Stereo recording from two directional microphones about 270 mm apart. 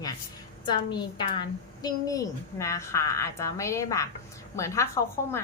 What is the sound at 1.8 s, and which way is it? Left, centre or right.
A woman's voice, centre.